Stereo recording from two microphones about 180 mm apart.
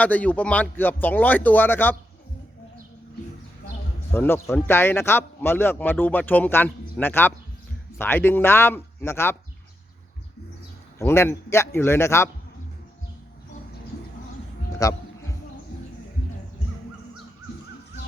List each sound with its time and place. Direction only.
0.0 s a man's voice: 10° left (ahead or behind)
4.1 s a man's voice: 10° left (ahead or behind)
11.0 s a man's voice: 15° left (ahead or behind)
14.8 s a sound: 20° left (ahead or behind)